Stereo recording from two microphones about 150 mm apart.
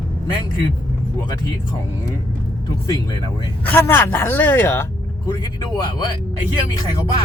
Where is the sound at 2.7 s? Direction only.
25° left (ahead or behind).